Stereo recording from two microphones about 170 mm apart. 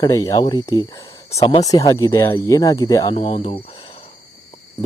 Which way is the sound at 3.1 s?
35° left (ahead or behind).